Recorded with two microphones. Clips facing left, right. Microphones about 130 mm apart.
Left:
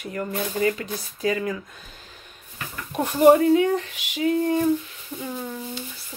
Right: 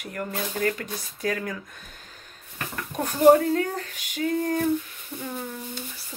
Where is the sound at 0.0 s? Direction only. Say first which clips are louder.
Left 3 dB; centre (ahead or behind).